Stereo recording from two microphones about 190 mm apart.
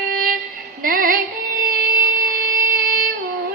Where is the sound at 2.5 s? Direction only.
45° right (ahead or behind).